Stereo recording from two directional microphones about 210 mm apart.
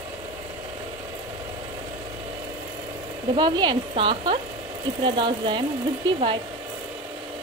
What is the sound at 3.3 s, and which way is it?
Speech, 20° right (ahead or behind).